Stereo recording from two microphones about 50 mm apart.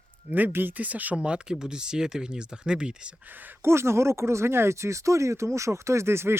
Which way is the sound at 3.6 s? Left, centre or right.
Right.